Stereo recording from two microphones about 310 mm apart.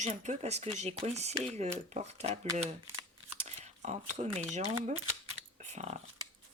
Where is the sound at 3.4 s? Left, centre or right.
Right.